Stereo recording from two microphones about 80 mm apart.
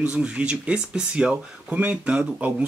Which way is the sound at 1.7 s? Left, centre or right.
Right.